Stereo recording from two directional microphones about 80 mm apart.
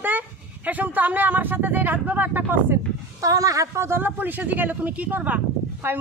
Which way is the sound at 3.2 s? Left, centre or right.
Right.